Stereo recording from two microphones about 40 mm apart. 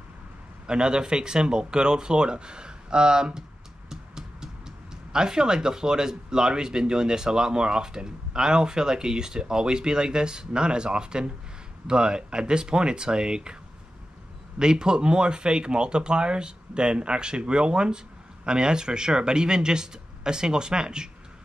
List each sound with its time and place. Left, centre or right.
0.7 s speech: right
14.6 s speech: centre